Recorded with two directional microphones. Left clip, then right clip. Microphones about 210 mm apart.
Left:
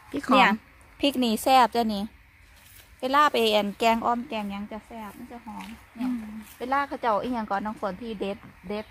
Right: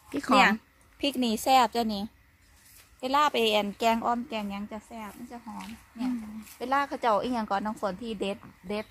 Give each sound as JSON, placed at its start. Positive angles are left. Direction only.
{"t": 0.1, "sound": "speech", "side_deg": 0}
{"t": 1.2, "sound": "a woman's voice", "side_deg": 45}
{"t": 5.3, "sound": "speech", "side_deg": 10}